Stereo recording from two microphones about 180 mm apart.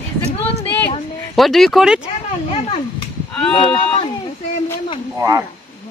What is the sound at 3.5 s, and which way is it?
Speech, 30° left (ahead or behind).